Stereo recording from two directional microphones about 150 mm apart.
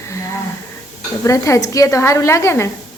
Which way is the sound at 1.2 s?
20° left (ahead or behind).